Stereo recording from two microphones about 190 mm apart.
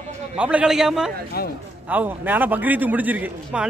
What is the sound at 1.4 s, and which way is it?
Speech, 55° left (ahead or behind).